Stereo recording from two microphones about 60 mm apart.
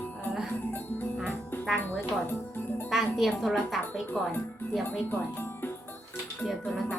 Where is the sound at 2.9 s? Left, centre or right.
Centre.